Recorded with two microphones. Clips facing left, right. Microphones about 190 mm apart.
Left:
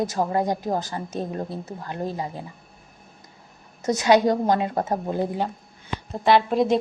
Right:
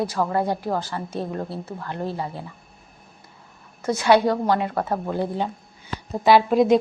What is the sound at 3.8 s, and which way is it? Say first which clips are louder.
Speech: even; 20° left (ahead or behind).